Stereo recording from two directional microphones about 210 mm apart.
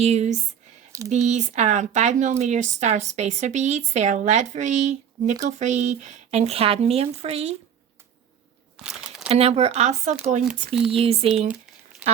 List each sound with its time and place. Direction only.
0.0 s speech: 30° right (ahead or behind)
8.8 s crumpling: 5° right (ahead or behind)
9.3 s speech: 30° right (ahead or behind)
10.5 s speech: centre (ahead or behind)
10.9 s speech: 25° right (ahead or behind)